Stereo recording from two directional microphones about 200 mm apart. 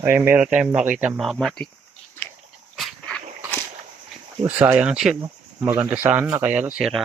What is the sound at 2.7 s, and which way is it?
Dog, 5° left (ahead or behind).